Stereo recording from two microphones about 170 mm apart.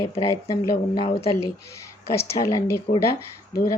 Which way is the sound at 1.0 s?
35° left (ahead or behind).